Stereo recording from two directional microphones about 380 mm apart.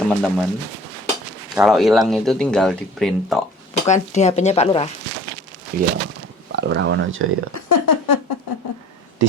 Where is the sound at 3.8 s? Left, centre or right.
Centre.